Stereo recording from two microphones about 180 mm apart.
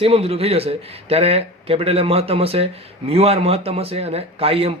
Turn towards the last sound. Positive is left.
turn(degrees=-30)  # may be behind; listen again after turning